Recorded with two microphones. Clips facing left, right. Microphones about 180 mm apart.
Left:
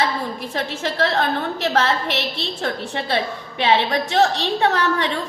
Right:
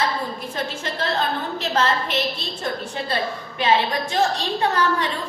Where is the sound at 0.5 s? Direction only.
70° left (ahead or behind).